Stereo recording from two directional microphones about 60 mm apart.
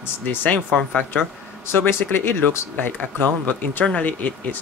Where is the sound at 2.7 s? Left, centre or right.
Left.